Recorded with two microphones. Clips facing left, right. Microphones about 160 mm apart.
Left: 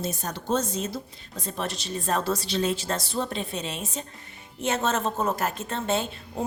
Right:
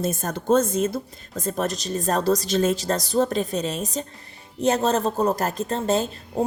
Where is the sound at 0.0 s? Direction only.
50° right (ahead or behind).